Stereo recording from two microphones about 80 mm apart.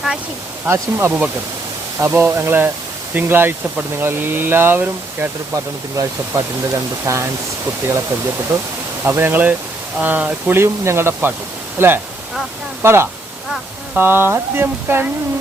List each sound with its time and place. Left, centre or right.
0.7 s speech: right
5.5 s speech: right
8.5 s speech: right; by 10.6 s centre
10.6 s speech: right